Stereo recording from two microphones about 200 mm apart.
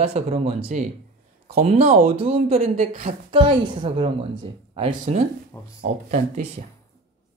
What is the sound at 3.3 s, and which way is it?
A woman's voice, 25° right (ahead or behind).